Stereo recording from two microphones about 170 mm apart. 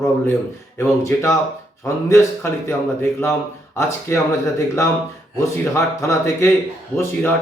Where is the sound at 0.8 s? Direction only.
15° left (ahead or behind).